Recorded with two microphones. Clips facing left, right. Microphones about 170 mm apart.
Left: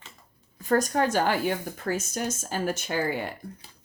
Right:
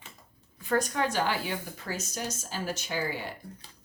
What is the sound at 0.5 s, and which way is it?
Speech, 40° left (ahead or behind).